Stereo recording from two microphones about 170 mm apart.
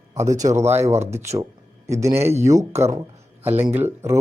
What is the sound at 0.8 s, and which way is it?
Speech, 15° right (ahead or behind).